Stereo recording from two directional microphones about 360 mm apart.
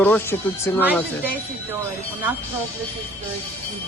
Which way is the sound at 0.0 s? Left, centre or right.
Centre.